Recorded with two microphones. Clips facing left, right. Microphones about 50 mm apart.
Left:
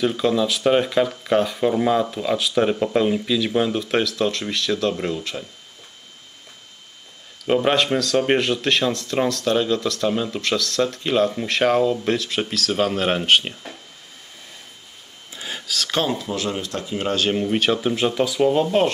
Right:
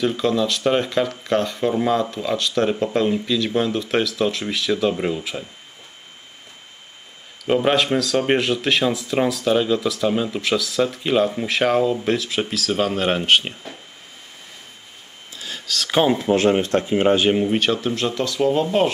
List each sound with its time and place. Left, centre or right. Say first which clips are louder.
0.0 s speech: even; centre
7.4 s speech: right 1 dB; centre
15.3 s a sound: left 2 dB; left
15.6 s speech: right 1 dB; centre
15.9 s speech: right 5 dB; centre
16.2 s speech: right 9 dB; right
17.3 s speech: right 3 dB; centre
17.6 s speech: left 1 dB; centre